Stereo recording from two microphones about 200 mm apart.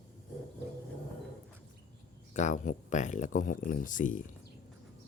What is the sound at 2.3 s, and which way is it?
Speech, 35° left (ahead or behind).